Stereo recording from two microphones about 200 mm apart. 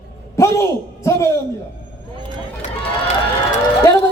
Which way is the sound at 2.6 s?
40° left (ahead or behind).